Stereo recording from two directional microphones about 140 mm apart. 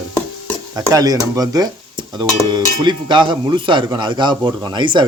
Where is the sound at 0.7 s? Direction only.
25° right (ahead or behind).